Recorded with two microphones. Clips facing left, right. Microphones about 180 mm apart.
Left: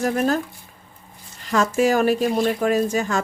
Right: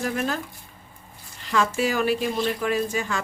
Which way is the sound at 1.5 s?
45° left (ahead or behind).